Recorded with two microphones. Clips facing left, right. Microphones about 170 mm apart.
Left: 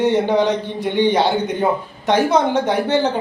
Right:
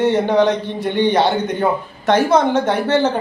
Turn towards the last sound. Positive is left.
turn(degrees=15)  # may be behind; listen again after turning